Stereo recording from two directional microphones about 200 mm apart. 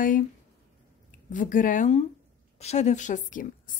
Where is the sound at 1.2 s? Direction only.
40° left (ahead or behind).